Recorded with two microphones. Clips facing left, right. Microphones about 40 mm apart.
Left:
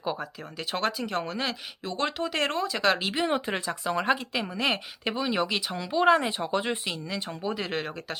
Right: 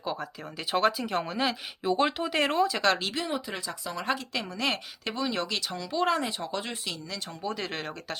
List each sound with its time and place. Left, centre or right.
0.0 s speech: centre
0.7 s speech: centre
3.2 s speech: left
4.4 s speech: centre
7.5 s speech: centre